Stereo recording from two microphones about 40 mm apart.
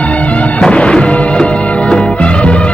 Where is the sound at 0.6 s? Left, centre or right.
Left.